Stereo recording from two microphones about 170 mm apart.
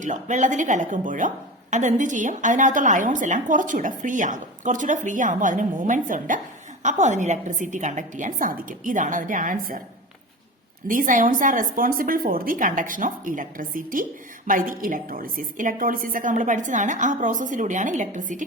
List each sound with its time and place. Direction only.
0.0 s a woman's voice: 45° right (ahead or behind)
10.8 s a woman's voice: 50° right (ahead or behind)